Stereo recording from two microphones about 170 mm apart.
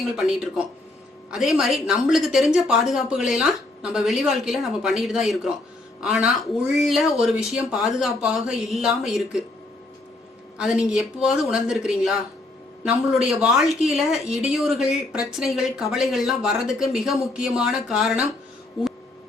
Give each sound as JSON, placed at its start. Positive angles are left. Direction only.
{"t": 0.2, "sound": "a woman's voice", "side_deg": -5}
{"t": 10.6, "sound": "a woman's voice", "side_deg": -5}